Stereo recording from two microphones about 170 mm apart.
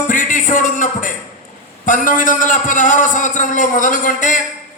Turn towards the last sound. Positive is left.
turn(degrees=50)  # may be behind; listen again after turning